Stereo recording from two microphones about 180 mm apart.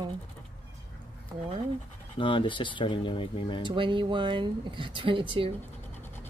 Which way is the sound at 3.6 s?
25° right (ahead or behind).